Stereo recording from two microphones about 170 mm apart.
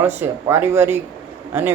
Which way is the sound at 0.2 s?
15° right (ahead or behind).